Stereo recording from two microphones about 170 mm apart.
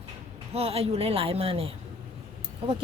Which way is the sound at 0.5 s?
35° right (ahead or behind).